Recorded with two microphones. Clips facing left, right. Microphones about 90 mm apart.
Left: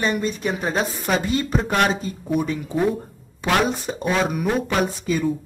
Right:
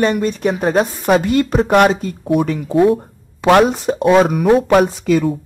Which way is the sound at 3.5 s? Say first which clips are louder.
Right 9 dB; 60° right (ahead or behind).